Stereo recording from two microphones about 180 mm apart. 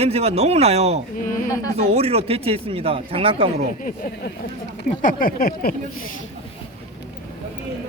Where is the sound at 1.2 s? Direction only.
50° left (ahead or behind).